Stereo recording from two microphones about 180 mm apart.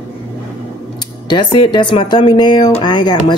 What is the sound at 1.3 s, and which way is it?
Speech, 25° left (ahead or behind).